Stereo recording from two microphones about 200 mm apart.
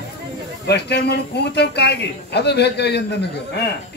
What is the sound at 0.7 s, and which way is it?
Speech, 55° left (ahead or behind).